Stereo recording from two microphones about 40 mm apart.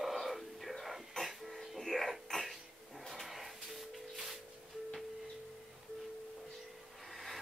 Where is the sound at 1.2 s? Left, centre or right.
Centre.